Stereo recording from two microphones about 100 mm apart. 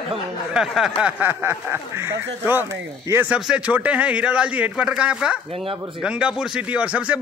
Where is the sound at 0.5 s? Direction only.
5° right (ahead or behind).